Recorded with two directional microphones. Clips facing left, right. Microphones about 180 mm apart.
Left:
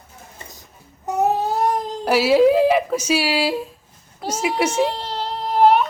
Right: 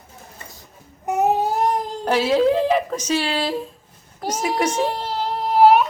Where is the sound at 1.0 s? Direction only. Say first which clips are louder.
Right 1 dB; 15° right (ahead or behind).